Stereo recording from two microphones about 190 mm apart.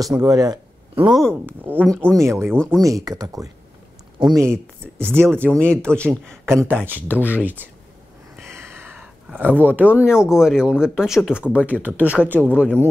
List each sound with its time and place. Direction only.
0.2 s speech: 20° right (ahead or behind)
1.4 s speech: 10° right (ahead or behind)
2.5 s speech: 5° left (ahead or behind)
2.8 s speech: 15° right (ahead or behind)
5.4 s speech: 5° left (ahead or behind)
6.9 s speech: 10° right (ahead or behind)
7.2 s speech: 10° left (ahead or behind)
7.4 s speech: 10° right (ahead or behind)
8.4 s a sound: 15° right (ahead or behind)
10.8 s speech: 5° right (ahead or behind)